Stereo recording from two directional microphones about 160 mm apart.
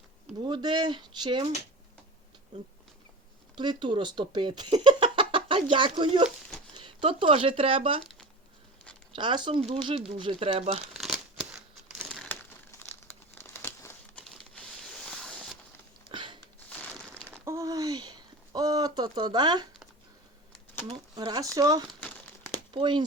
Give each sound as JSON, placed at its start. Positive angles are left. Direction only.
{"t": 0.3, "sound": "speech", "side_deg": -30}
{"t": 3.5, "sound": "speech", "side_deg": -30}
{"t": 9.1, "sound": "speech", "side_deg": -30}
{"t": 10.9, "sound": "crumpling", "side_deg": 0}
{"t": 12.7, "sound": "crumpling", "side_deg": 20}
{"t": 14.3, "sound": "a sound", "side_deg": 5}
{"t": 16.1, "sound": "a sound", "side_deg": -30}
{"t": 16.6, "sound": "crumpling", "side_deg": 10}
{"t": 17.3, "sound": "a sound", "side_deg": -15}
{"t": 20.8, "sound": "speech", "side_deg": -25}
{"t": 21.8, "sound": "crumpling", "side_deg": 10}
{"t": 22.5, "sound": "a sound", "side_deg": -30}